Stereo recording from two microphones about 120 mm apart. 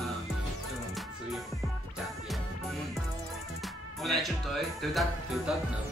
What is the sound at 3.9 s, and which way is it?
Speech, centre (ahead or behind).